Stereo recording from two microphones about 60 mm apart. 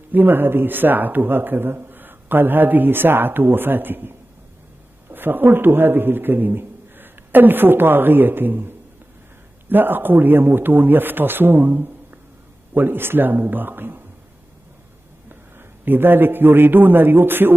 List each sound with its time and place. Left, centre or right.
0.1 s speech: right
5.1 s a man's voice: right
15.8 s speech: right